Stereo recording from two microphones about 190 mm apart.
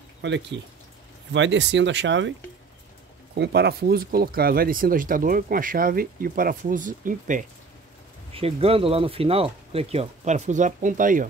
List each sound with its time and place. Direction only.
0.2 s speech: 70° right (ahead or behind)
3.3 s speech: 60° right (ahead or behind); by 7.4 s 45° right (ahead or behind)
8.3 s speech: 30° right (ahead or behind)